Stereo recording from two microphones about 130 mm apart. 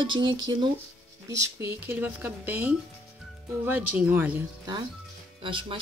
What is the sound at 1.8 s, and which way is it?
A woman's voice, 15° right (ahead or behind).